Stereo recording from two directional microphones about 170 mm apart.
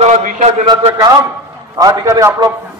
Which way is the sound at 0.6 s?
20° right (ahead or behind).